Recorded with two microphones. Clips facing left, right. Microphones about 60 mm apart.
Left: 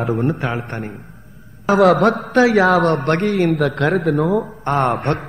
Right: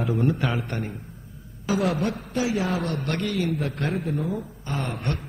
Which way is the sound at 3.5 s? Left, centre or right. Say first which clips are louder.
Left 10 dB; left.